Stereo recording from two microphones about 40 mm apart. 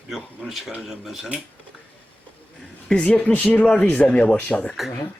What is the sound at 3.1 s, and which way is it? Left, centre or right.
Speech, left.